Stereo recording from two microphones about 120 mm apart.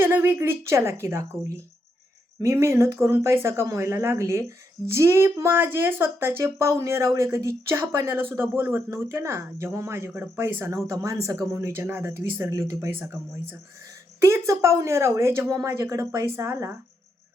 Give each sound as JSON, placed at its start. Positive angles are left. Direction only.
{"t": 0.0, "sound": "speech", "side_deg": -20}